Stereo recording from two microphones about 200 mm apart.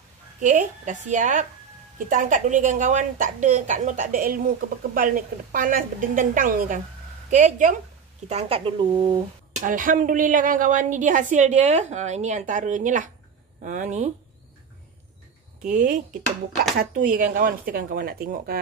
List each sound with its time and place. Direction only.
0.4 s a woman's voice: 40° right (ahead or behind); by 9.2 s 25° right (ahead or behind)
9.6 s a woman's voice: 40° right (ahead or behind)
15.6 s a woman's voice: 40° right (ahead or behind)